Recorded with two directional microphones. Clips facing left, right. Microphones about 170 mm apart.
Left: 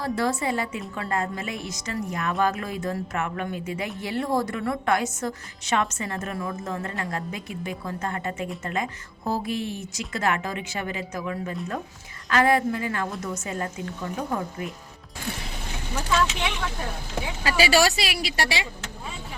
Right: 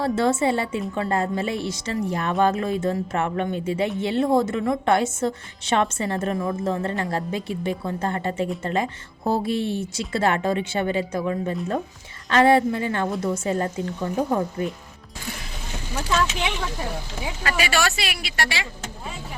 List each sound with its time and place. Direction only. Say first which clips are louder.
0.0 s a woman's voice: right 5 dB; 25° right (ahead or behind)
17.4 s a woman's voice: left 3 dB; 30° left (ahead or behind)